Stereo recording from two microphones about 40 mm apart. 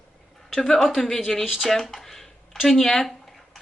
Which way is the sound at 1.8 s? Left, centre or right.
Centre.